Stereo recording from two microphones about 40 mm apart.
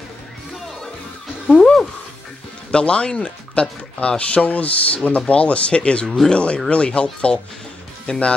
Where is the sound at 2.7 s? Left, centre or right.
Left.